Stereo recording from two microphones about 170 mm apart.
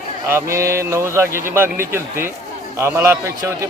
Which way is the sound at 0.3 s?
15° right (ahead or behind).